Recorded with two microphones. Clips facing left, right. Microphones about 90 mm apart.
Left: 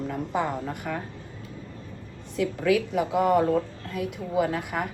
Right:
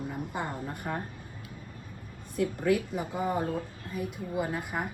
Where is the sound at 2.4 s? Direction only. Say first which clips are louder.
Left 3 dB; 75° left (ahead or behind).